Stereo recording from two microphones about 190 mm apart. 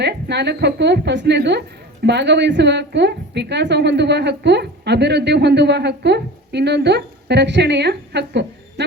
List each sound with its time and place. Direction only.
0.0 s a woman's voice: 60° right (ahead or behind)